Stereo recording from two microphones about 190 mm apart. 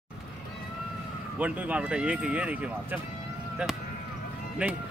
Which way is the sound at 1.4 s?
10° right (ahead or behind).